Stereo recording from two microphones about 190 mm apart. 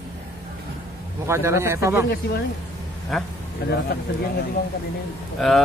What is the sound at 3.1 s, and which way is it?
Speech, centre (ahead or behind).